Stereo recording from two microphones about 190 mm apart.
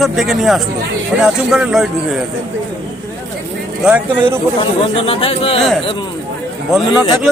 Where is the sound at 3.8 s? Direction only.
5° right (ahead or behind).